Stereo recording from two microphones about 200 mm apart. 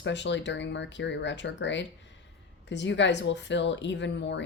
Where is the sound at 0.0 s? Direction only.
60° left (ahead or behind).